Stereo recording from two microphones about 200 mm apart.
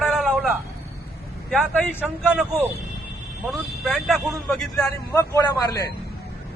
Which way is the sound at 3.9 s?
Centre (ahead or behind).